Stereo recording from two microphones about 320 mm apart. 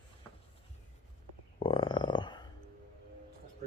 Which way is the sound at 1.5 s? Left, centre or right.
Centre.